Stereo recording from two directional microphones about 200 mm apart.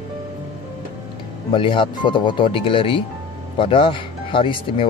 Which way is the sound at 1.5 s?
25° left (ahead or behind).